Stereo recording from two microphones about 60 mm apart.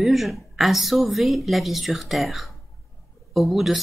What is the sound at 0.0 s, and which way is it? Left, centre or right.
A woman's voice, centre.